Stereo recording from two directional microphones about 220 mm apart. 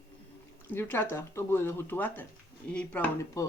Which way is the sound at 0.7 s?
10° left (ahead or behind).